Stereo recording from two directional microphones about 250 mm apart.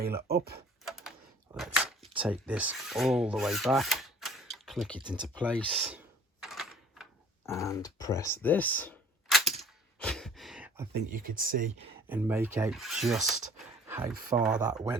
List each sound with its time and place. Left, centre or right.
0.0 s speech: right
0.9 s a sound: centre
2.1 s speech: centre
4.9 s speech: centre
5.4 s speech: centre
6.4 s a sound: centre
7.4 s a sound: centre
10.9 s speech: right
12.0 s speech: centre